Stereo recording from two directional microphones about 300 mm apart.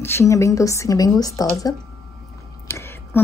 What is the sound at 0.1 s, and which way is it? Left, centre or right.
Speech, centre.